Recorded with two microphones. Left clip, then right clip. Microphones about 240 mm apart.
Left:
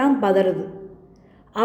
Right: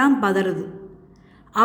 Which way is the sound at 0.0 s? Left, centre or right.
Centre.